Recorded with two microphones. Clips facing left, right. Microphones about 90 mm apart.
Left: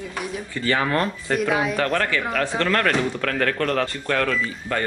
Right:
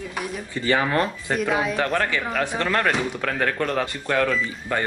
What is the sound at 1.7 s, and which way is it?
A man's voice, 15° right (ahead or behind).